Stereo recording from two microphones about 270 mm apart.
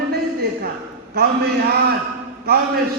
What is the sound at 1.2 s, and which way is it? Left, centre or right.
Speech, right.